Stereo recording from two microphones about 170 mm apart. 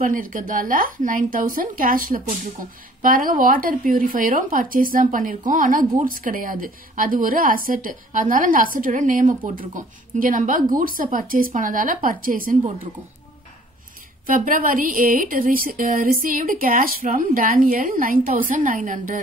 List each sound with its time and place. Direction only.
0.0 s speech: 55° right (ahead or behind)
14.2 s speech: 55° right (ahead or behind)